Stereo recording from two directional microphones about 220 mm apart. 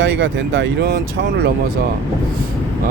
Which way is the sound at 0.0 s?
50° right (ahead or behind).